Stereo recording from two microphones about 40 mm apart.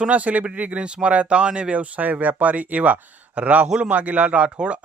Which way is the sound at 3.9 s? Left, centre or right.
Right.